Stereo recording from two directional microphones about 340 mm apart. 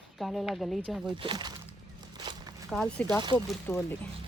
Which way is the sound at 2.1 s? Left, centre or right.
Centre.